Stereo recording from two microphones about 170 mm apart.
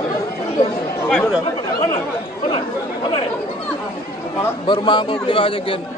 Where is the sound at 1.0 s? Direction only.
5° left (ahead or behind).